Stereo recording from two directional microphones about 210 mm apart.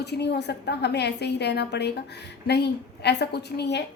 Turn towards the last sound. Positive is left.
turn(degrees=55)  # may be behind; listen again after turning